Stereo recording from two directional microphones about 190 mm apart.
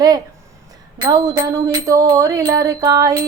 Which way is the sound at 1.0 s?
20° right (ahead or behind).